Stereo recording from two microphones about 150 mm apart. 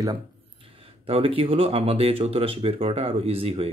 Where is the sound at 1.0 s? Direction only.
40° right (ahead or behind).